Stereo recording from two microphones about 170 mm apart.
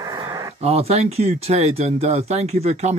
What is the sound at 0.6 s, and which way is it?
Speech, 40° right (ahead or behind).